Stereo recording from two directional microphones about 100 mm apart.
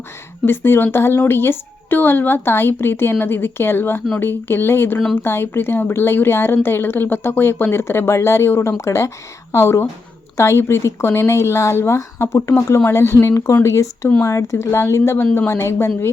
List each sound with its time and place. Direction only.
0.4 s a woman's voice: 25° left (ahead or behind)